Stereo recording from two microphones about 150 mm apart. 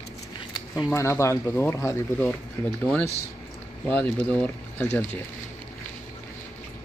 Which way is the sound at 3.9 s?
10° left (ahead or behind).